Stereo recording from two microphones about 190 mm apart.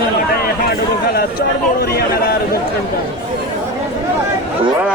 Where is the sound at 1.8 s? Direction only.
55° left (ahead or behind).